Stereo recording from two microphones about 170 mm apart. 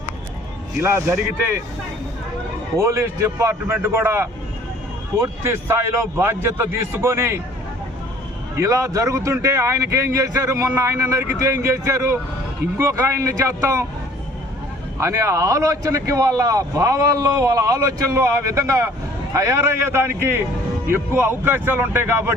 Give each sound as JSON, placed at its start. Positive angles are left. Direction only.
{"t": 0.8, "sound": "speech", "side_deg": -10}
{"t": 2.7, "sound": "speech", "side_deg": -15}
{"t": 8.5, "sound": "speech", "side_deg": -15}
{"t": 15.0, "sound": "speech", "side_deg": -15}